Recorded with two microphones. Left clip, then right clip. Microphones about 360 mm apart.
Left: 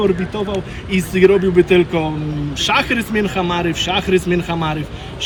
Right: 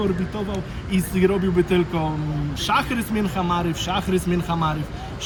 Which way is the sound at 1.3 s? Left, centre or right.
Centre.